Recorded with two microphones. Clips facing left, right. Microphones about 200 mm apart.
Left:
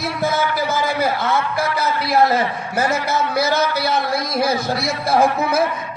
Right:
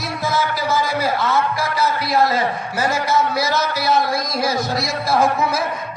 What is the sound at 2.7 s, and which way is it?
Speech, 60° left (ahead or behind).